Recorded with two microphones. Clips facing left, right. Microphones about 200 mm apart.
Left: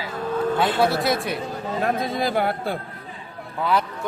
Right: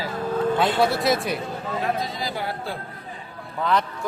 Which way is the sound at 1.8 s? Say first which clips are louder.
Left 6 dB; 55° left (ahead or behind).